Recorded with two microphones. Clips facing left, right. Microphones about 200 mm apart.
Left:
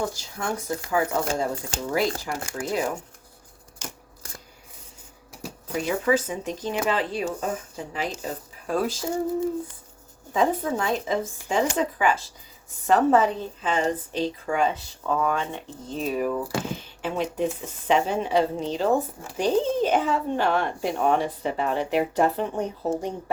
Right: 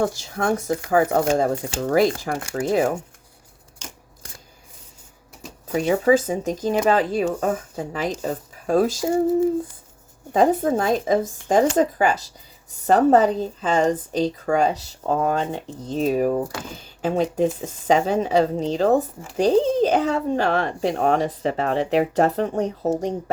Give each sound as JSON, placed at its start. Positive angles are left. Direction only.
{"t": 0.0, "sound": "speech", "side_deg": -55}
{"t": 5.7, "sound": "speech", "side_deg": -40}
{"t": 10.3, "sound": "a woman's voice", "side_deg": -45}
{"t": 21.2, "sound": "speech", "side_deg": -90}
{"t": 21.7, "sound": "a woman's voice", "side_deg": -35}